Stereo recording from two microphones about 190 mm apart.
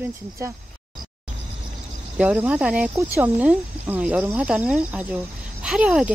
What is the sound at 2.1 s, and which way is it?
Speech, 5° right (ahead or behind).